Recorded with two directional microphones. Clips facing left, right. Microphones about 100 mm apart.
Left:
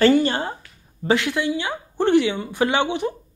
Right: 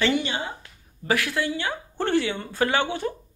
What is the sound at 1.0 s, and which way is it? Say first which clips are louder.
Speech: left 4 dB; 20° left (ahead or behind).